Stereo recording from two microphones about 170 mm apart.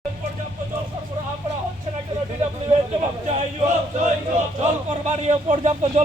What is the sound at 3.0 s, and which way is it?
A man's voice, 35° right (ahead or behind).